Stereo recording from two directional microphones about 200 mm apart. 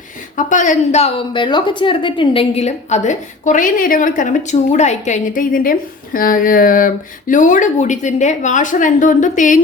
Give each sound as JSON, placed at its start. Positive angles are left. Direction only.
{"t": 0.3, "sound": "a woman's voice", "side_deg": 40}